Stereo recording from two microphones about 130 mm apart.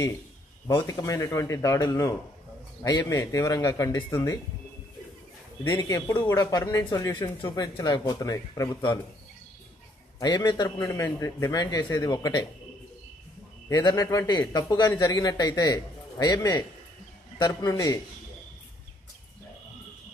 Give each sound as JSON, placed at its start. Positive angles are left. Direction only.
{"t": 0.8, "sound": "a man's voice", "side_deg": 25}
{"t": 5.7, "sound": "a man's voice", "side_deg": 25}
{"t": 10.1, "sound": "speech", "side_deg": 30}
{"t": 11.0, "sound": "a man's voice", "side_deg": 20}
{"t": 13.7, "sound": "a man's voice", "side_deg": 30}